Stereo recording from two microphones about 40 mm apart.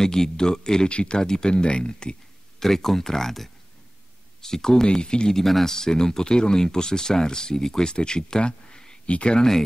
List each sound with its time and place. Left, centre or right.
0.0 s speech: centre
2.6 s speech: centre
5.4 s speech: centre; by 9.5 s left